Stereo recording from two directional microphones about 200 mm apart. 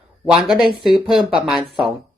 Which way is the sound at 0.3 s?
Centre (ahead or behind).